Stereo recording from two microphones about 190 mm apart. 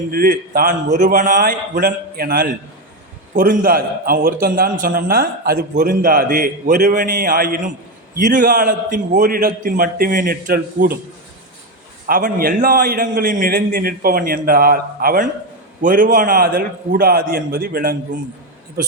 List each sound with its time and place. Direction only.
0.1 s a man's voice: 50° right (ahead or behind)
12.0 s a man's voice: 50° right (ahead or behind)